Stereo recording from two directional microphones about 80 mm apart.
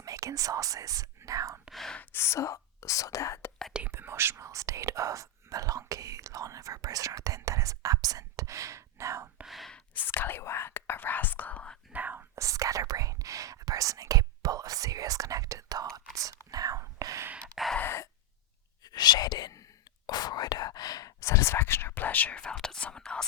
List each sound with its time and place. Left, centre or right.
0.0 s speech: right
1.7 s speech: centre
2.0 s speech: left
3.7 s speech: centre
3.9 s speech: right
9.5 s speech: centre
10.1 s speech: left
11.9 s speech: right
12.4 s speech: right
17.6 s gasp: centre
18.8 s speech: left
21.2 s speech: left; by 23.2 s centre